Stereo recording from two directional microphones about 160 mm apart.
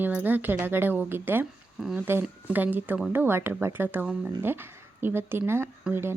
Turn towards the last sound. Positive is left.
turn(degrees=-15)  # may be behind; listen again after turning